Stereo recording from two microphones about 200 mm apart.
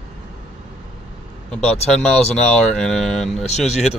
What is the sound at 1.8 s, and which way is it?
A man's voice, centre (ahead or behind).